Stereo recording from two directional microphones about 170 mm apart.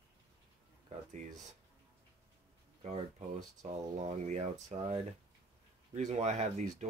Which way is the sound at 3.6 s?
40° right (ahead or behind).